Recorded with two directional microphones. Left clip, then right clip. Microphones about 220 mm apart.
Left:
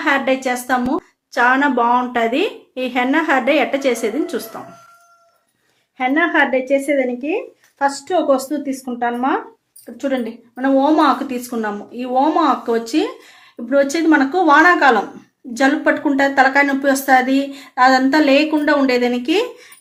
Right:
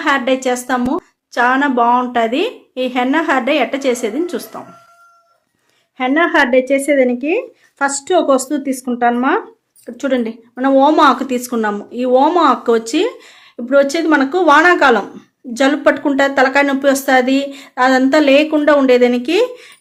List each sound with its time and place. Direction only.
0.0 s a woman's voice: 20° right (ahead or behind)
6.0 s a woman's voice: 25° right (ahead or behind)